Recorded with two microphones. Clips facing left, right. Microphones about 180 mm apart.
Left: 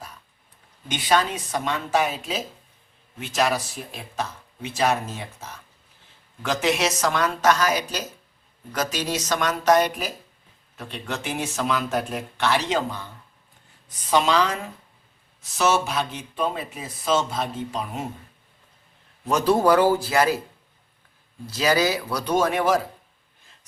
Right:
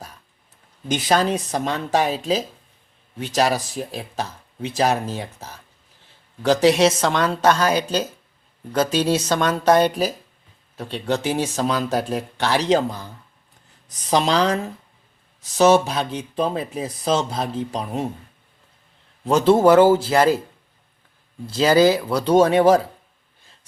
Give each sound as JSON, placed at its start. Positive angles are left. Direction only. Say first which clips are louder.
{"t": 0.9, "sound": "speech", "louder": "right 3 dB", "side_deg": -40}
{"t": 14.1, "sound": "speech", "louder": "right 2 dB", "side_deg": -35}
{"t": 19.2, "sound": "speech", "louder": "right 5 dB", "side_deg": -30}
{"t": 21.4, "sound": "speech", "louder": "right 6 dB", "side_deg": -25}